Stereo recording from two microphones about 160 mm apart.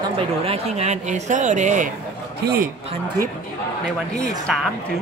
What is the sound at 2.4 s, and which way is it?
Speech, 65° right (ahead or behind).